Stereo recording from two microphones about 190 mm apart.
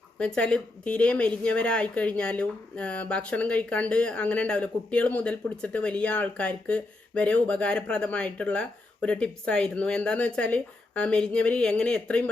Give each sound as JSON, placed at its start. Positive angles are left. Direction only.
{"t": 0.2, "sound": "a woman's voice", "side_deg": 5}